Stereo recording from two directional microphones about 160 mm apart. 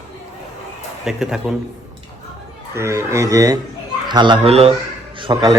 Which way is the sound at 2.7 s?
15° right (ahead or behind).